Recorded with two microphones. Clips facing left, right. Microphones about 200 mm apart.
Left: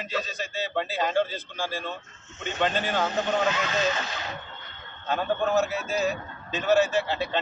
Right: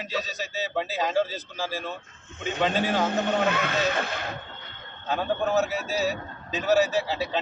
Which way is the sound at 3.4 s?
60° right (ahead or behind).